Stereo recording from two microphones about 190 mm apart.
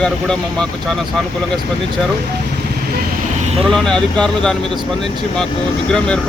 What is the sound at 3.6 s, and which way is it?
Speech, 5° left (ahead or behind).